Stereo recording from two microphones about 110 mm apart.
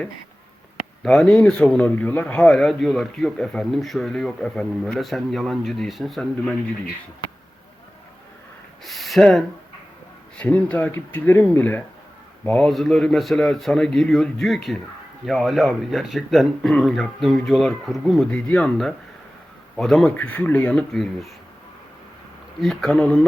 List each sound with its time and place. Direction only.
1.0 s a man's voice: 5° left (ahead or behind)
8.8 s a sound: centre (ahead or behind)
10.3 s speech: 15° left (ahead or behind)
12.5 s a man's voice: 5° left (ahead or behind)
18.3 s speech: 10° left (ahead or behind)
19.7 s a man's voice: centre (ahead or behind)
20.1 s speech: 15° left (ahead or behind)
22.6 s a man's voice: 5° left (ahead or behind)